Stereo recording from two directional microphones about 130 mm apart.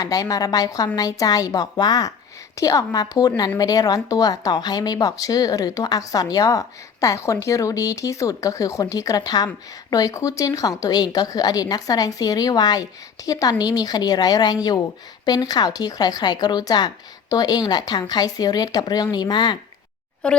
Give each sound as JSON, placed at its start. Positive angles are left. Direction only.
{"t": 0.0, "sound": "a woman's voice", "side_deg": 25}
{"t": 20.2, "sound": "speech", "side_deg": 5}